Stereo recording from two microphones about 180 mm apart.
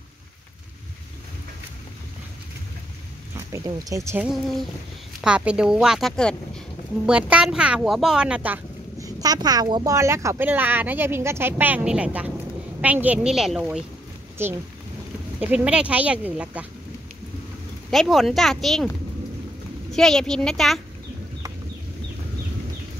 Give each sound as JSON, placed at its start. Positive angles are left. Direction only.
{"t": 3.5, "sound": "speech", "side_deg": -15}
{"t": 4.3, "sound": "a woman's voice", "side_deg": 0}
{"t": 9.0, "sound": "speech", "side_deg": -20}
{"t": 17.9, "sound": "a woman's voice", "side_deg": 0}
{"t": 19.9, "sound": "a woman's voice", "side_deg": 0}